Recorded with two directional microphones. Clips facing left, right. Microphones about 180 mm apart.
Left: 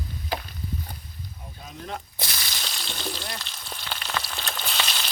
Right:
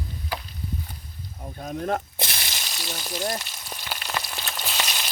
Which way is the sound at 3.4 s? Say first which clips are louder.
Even; 10° right (ahead or behind).